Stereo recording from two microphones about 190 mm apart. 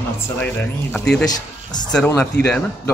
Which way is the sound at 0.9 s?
5° left (ahead or behind).